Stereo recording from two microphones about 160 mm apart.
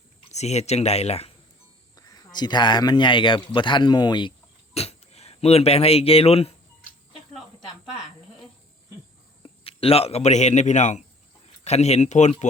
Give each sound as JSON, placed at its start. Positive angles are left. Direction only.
{"t": 0.3, "sound": "speech", "side_deg": 45}
{"t": 2.0, "sound": "a man's voice", "side_deg": 25}
{"t": 4.7, "sound": "speech", "side_deg": 40}
{"t": 9.4, "sound": "a man's voice", "side_deg": 35}